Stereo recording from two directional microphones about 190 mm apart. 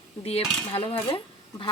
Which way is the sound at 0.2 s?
30° left (ahead or behind).